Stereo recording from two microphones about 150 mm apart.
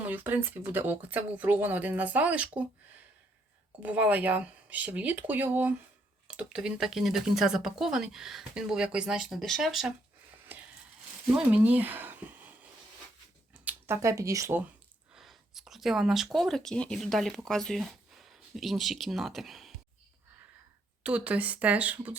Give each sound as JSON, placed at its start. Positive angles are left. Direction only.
{"t": 0.0, "sound": "speech", "side_deg": -10}
{"t": 3.8, "sound": "speech", "side_deg": -10}
{"t": 11.3, "sound": "speech", "side_deg": -10}
{"t": 13.5, "sound": "speech", "side_deg": -15}
{"t": 15.1, "sound": "speech", "side_deg": 0}
{"t": 21.0, "sound": "speech", "side_deg": -10}